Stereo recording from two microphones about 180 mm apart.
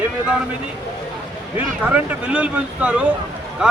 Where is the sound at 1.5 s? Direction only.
10° right (ahead or behind).